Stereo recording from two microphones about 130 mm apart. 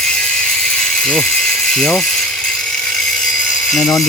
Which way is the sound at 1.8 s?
5° left (ahead or behind).